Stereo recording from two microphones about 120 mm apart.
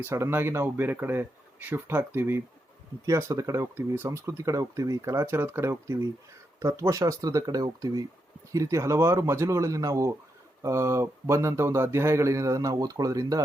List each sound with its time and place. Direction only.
0.1 s speech: 20° right (ahead or behind)